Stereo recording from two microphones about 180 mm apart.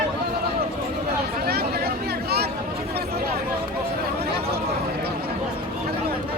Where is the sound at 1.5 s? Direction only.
60° right (ahead or behind).